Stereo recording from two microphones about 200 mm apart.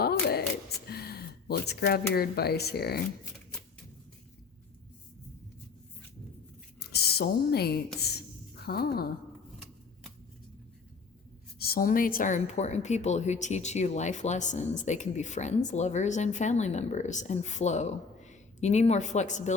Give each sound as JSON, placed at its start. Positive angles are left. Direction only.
{"t": 0.0, "sound": "a sound", "side_deg": 50}
{"t": 0.9, "sound": "gasp", "side_deg": 50}
{"t": 2.1, "sound": "speech", "side_deg": 50}
{"t": 6.9, "sound": "speech", "side_deg": 50}
{"t": 7.9, "sound": "a sound", "side_deg": 55}
{"t": 11.6, "sound": "speech", "side_deg": 45}